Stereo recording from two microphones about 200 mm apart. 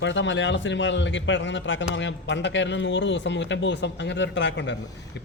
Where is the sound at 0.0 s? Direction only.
65° left (ahead or behind).